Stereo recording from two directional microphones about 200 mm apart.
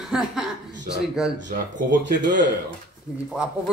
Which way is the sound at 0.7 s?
60° right (ahead or behind).